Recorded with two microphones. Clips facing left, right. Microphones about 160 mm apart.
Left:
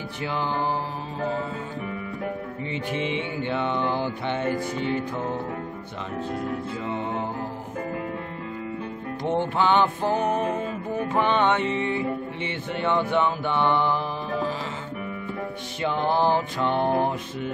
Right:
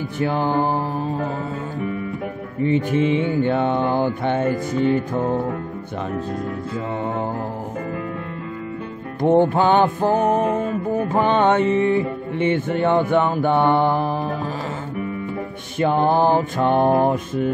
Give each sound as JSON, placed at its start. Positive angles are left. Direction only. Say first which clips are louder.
{"t": 0.2, "sound": "music", "louder": "right 7 dB", "side_deg": -45}
{"t": 2.7, "sound": "music", "louder": "right 9 dB", "side_deg": -45}
{"t": 9.3, "sound": "music", "louder": "right 7 dB", "side_deg": -45}
{"t": 15.8, "sound": "music", "louder": "right 6 dB", "side_deg": -50}